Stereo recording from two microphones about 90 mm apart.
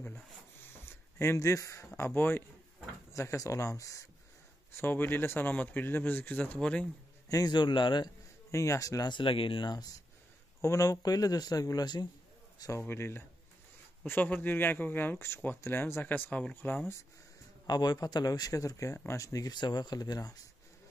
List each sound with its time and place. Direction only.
0.8 s speech: 30° left (ahead or behind)
4.7 s speech: 25° left (ahead or behind)
7.2 s speech: 45° left (ahead or behind); by 8.1 s 60° left (ahead or behind)
8.5 s speech: 35° left (ahead or behind)
9.1 s speech: 70° left (ahead or behind)
10.6 s speech: 35° left (ahead or behind)
12.5 s a man's voice: 40° left (ahead or behind)
12.8 s speech: 25° left (ahead or behind)
17.6 s speech: 50° left (ahead or behind)